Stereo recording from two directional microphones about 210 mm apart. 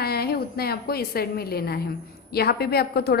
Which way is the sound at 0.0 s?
50° left (ahead or behind).